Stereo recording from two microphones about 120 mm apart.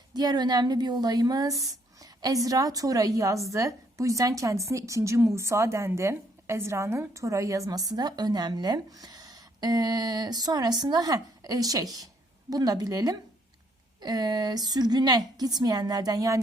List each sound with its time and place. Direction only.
0.1 s a woman's voice: 35° right (ahead or behind)